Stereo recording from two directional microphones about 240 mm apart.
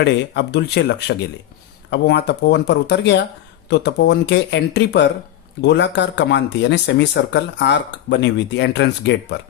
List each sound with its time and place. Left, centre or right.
0.0 s speech: left